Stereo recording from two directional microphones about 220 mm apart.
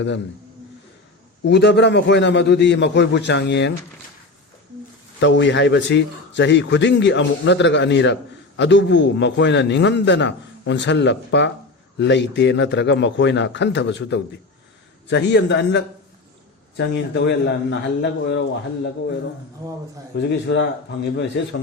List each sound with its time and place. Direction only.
1.5 s a man's voice: 50° left (ahead or behind)
5.2 s a man's voice: 55° left (ahead or behind)
20.1 s a man's voice: 55° left (ahead or behind)